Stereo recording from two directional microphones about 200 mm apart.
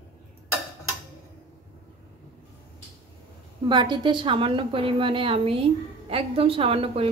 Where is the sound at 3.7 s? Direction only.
25° right (ahead or behind).